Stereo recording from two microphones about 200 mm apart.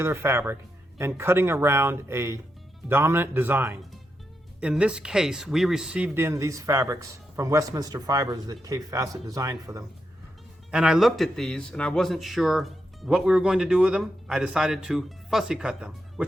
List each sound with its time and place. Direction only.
0.0 s speech: 10° right (ahead or behind)
10.7 s a man's voice: 5° right (ahead or behind)